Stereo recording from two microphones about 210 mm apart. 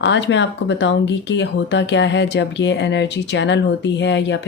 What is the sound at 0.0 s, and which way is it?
Speech, 60° left (ahead or behind).